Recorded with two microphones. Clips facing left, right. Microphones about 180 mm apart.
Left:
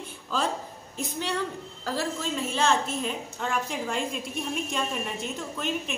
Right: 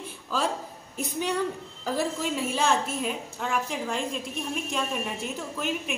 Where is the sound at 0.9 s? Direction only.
10° right (ahead or behind).